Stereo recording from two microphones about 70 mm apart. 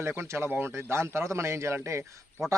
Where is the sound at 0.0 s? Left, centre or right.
Right.